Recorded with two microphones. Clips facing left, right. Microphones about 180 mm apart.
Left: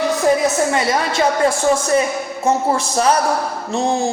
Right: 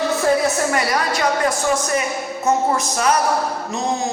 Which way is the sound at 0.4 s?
25° left (ahead or behind).